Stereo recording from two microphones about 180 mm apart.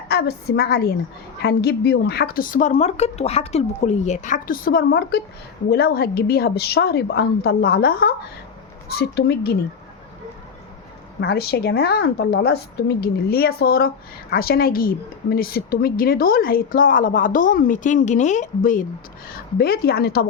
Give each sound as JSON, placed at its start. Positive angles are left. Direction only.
{"t": 0.1, "sound": "a woman's voice", "side_deg": 65}
{"t": 11.2, "sound": "a woman's voice", "side_deg": 65}
{"t": 19.5, "sound": "a woman's voice", "side_deg": 60}